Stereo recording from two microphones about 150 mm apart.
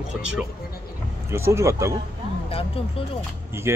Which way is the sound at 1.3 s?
15° right (ahead or behind).